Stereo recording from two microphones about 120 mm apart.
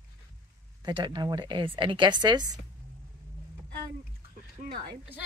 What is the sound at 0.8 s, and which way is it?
A woman's voice, 40° right (ahead or behind).